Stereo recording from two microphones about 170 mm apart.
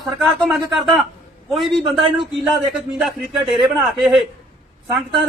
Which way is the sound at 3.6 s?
25° right (ahead or behind).